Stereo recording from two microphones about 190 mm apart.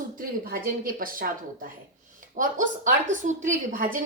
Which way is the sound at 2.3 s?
45° right (ahead or behind).